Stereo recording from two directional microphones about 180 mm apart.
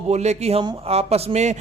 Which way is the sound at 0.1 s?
35° right (ahead or behind).